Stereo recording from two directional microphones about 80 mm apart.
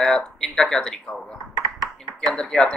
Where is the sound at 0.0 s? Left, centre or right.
Centre.